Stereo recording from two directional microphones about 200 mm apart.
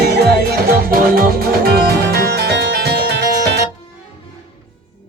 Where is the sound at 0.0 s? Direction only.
55° right (ahead or behind).